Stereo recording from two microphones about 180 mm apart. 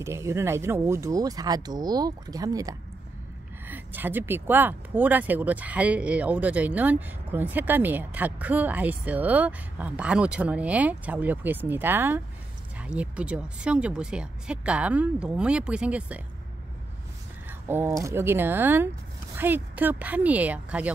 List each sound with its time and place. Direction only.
0.0 s speech: 15° right (ahead or behind)
17.6 s speech: 10° right (ahead or behind)